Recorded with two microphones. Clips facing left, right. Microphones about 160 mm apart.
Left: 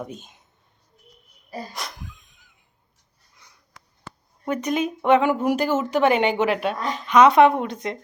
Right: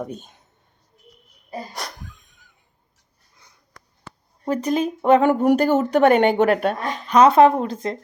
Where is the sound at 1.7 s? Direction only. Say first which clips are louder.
Right 2 dB; 40° right (ahead or behind).